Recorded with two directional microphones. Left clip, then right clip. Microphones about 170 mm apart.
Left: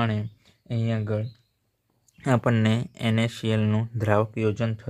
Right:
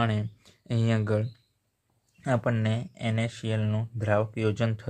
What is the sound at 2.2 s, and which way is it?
Speech, 30° left (ahead or behind).